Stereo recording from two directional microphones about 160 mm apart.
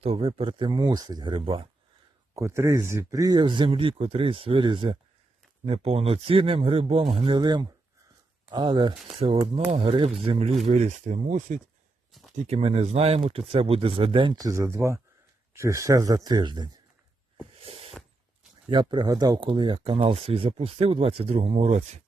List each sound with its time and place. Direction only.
0.0 s speech: 35° right (ahead or behind)
2.3 s speech: 15° right (ahead or behind)
17.6 s a sound: 40° right (ahead or behind)
18.7 s speech: 30° right (ahead or behind); by 22.0 s 45° right (ahead or behind)